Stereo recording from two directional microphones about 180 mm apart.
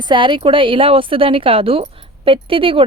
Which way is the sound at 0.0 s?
25° right (ahead or behind).